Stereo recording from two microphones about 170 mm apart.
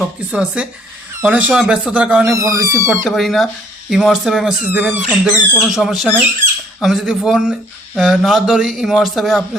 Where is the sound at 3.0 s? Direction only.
Centre (ahead or behind).